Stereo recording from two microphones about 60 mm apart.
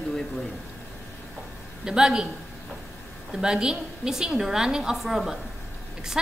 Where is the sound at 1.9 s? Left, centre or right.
Centre.